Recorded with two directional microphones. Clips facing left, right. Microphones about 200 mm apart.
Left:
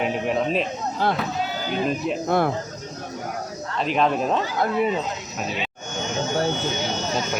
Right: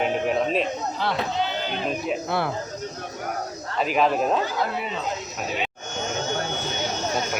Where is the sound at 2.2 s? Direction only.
45° left (ahead or behind).